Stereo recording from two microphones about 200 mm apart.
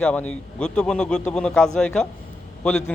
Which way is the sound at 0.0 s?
5° left (ahead or behind).